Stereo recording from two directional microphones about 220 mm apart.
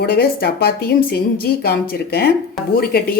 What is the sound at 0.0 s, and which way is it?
A woman's voice, 45° left (ahead or behind).